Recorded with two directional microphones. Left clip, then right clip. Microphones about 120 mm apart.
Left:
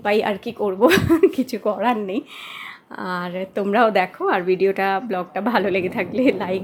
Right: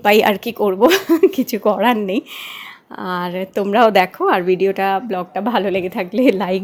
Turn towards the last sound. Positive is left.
turn(degrees=-35)  # may be behind; listen again after turning